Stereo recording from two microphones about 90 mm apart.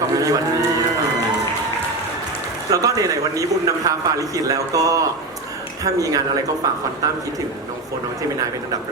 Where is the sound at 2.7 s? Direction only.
40° right (ahead or behind).